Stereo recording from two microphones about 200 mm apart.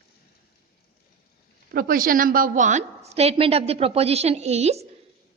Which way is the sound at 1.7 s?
45° right (ahead or behind).